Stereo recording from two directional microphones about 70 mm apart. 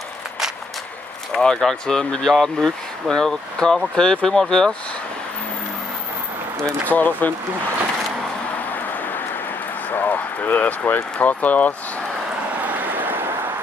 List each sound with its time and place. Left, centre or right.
1.3 s speech: centre
6.9 s speech: left
9.9 s speech: left
12.5 s vehicle: right